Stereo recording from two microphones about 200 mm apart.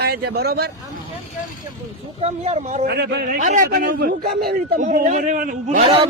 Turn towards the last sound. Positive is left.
turn(degrees=-40)  # may be behind; listen again after turning